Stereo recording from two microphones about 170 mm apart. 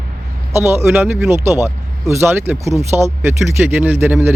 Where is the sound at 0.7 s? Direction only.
15° right (ahead or behind).